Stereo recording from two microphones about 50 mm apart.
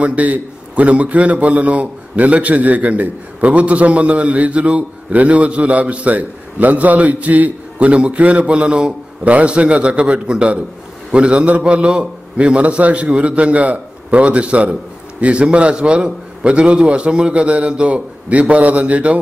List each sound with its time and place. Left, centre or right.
0.0 s a man's voice: right